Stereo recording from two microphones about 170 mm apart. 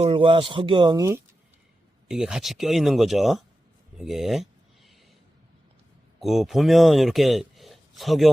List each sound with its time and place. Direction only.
0.0 s speech: 30° right (ahead or behind)
2.0 s speech: 5° right (ahead or behind)
3.9 s a sound: centre (ahead or behind)
6.1 s speech: centre (ahead or behind)